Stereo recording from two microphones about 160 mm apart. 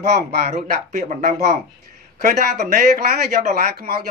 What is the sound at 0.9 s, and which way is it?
Speech, 50° right (ahead or behind).